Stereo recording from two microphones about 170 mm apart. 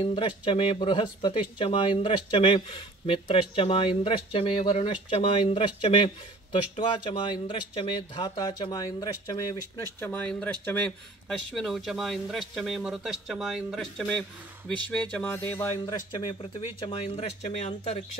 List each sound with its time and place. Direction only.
0.0 s speech: 30° left (ahead or behind)
7.1 s speech: 30° left (ahead or behind); by 14.2 s 5° left (ahead or behind)
14.9 s music: 10° left (ahead or behind)
15.8 s speech: 25° left (ahead or behind); by 18.0 s 40° left (ahead or behind)